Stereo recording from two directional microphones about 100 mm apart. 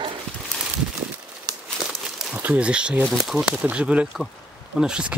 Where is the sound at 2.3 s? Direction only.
15° right (ahead or behind).